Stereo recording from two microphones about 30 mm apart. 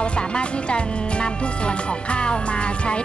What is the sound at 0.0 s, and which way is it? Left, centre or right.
Speech, left.